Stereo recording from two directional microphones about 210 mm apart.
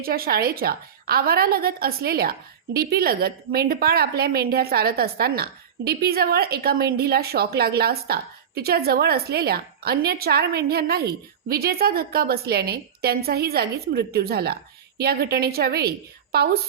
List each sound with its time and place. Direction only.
0.0 s a woman's voice: 45° right (ahead or behind)